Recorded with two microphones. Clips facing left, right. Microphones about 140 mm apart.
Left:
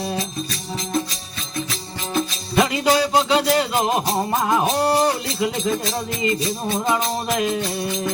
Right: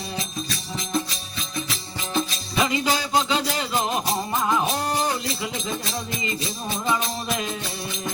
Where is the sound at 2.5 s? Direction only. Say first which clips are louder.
Left 5 dB; 65° left (ahead or behind).